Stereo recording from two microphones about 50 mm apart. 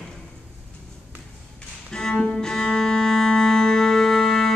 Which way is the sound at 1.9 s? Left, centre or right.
Centre.